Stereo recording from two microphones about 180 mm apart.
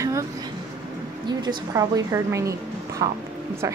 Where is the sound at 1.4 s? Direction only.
20° right (ahead or behind).